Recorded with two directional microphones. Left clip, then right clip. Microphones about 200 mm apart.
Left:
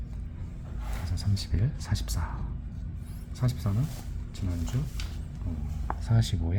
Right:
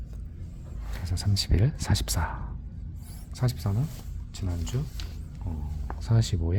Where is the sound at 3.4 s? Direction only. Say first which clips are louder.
Right 2 dB; 40° right (ahead or behind).